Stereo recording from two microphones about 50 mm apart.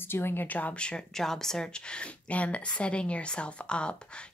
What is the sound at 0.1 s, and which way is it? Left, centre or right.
Speech, left.